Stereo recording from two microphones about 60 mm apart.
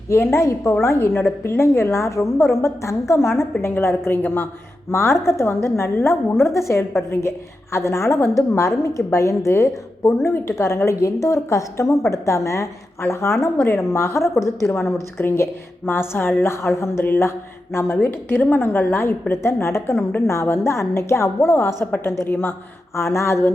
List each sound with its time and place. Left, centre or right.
0.1 s a woman's voice: left
10.6 s a woman's voice: left
23.0 s a woman's voice: left